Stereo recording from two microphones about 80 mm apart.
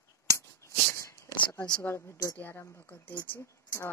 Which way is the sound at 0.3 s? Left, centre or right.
Left.